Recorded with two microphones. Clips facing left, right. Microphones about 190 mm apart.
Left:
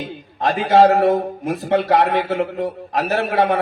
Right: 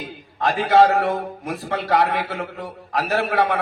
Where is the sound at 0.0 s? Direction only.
25° left (ahead or behind).